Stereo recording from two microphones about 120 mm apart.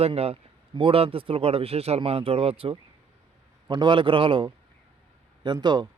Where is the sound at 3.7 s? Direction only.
40° right (ahead or behind).